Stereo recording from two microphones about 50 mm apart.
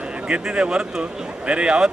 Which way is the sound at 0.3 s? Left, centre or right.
Centre.